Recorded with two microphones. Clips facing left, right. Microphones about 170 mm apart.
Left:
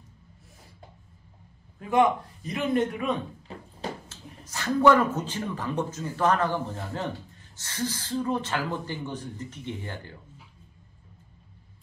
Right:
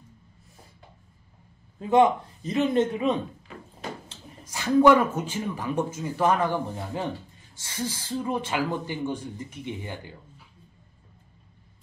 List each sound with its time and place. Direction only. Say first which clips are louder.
1.8 s a man's voice: right 3 dB; 25° right (ahead or behind)
4.1 s speech: right 1 dB; 10° right (ahead or behind)